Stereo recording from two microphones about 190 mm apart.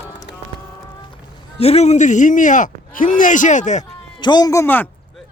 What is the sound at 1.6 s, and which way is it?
Speech, 35° left (ahead or behind).